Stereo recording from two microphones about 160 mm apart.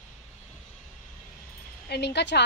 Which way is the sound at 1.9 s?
90° left.